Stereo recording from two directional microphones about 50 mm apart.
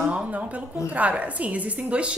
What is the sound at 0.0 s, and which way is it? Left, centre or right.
A woman's voice, right.